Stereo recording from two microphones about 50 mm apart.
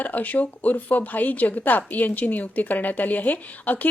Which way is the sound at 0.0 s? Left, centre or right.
Left.